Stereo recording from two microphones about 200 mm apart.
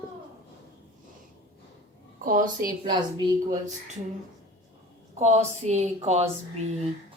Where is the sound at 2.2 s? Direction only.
40° right (ahead or behind).